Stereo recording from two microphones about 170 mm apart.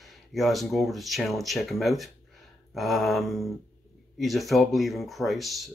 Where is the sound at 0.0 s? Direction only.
Centre (ahead or behind).